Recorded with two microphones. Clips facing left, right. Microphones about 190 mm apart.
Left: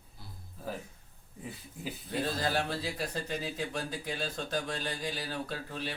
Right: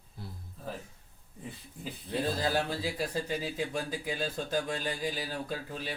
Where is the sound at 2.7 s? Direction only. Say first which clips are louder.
Right 2 dB; 10° right (ahead or behind).